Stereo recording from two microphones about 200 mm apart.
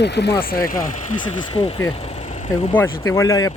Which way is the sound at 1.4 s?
30° left (ahead or behind).